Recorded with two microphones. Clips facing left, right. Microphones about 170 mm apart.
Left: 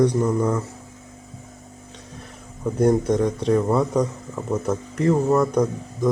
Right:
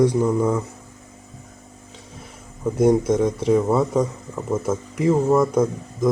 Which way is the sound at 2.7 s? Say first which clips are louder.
Right 2 dB; 5° right (ahead or behind).